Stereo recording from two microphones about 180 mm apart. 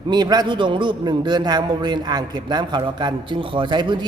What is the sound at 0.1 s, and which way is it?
A man's voice, 20° right (ahead or behind).